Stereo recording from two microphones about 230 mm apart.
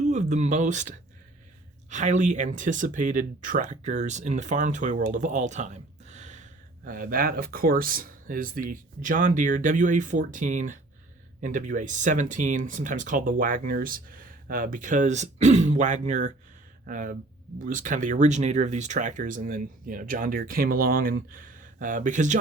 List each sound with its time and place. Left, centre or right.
0.1 s speech: right